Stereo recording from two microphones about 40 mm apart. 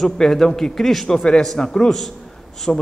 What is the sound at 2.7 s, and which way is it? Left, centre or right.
Speech, left.